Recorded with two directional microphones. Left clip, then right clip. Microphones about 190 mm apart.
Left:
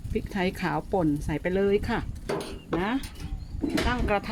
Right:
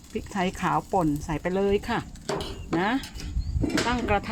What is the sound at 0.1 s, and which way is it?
Speech, centre (ahead or behind).